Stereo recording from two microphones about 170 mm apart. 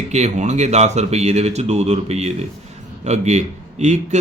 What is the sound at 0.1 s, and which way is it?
A man's voice, 40° right (ahead or behind).